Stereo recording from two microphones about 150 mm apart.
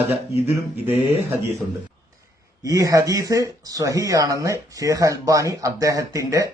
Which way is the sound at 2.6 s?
20° right (ahead or behind).